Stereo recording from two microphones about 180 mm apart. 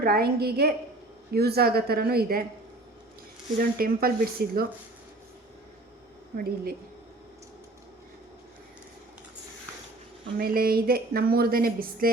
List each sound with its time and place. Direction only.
0.0 s speech: 55° right (ahead or behind)
3.6 s speech: 55° right (ahead or behind)
6.3 s speech: 55° right (ahead or behind)
10.3 s speech: 55° right (ahead or behind)